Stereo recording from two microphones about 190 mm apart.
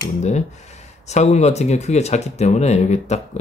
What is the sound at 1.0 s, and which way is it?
Speech, 35° left (ahead or behind).